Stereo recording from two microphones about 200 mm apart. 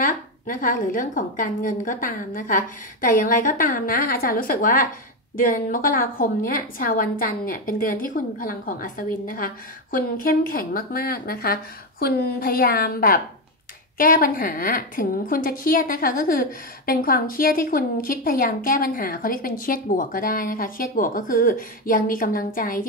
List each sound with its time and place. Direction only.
0.0 s a woman's voice: 45° left (ahead or behind)